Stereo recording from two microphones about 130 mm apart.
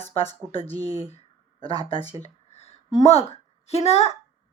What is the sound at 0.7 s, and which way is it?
Speech, 30° right (ahead or behind).